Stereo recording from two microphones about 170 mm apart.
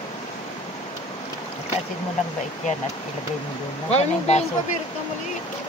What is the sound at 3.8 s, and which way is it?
Speech, 40° left (ahead or behind).